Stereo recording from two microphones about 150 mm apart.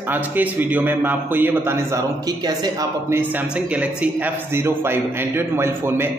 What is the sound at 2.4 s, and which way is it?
Speech, 25° right (ahead or behind).